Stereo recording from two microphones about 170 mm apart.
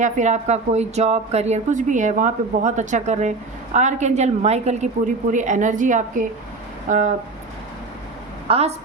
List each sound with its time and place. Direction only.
0.0 s speech: 45° right (ahead or behind)
8.4 s a woman's voice: 35° right (ahead or behind)